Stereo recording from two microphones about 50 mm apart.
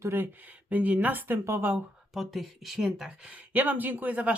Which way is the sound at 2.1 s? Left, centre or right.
Centre.